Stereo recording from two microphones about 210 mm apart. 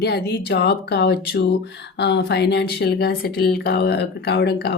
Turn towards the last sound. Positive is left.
turn(degrees=55)  # may be behind; listen again after turning